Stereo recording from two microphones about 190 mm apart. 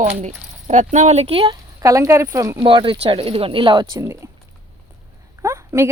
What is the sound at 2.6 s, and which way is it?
Speech, 25° right (ahead or behind).